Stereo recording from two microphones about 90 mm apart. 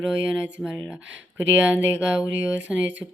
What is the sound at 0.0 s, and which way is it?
Speech, 10° right (ahead or behind).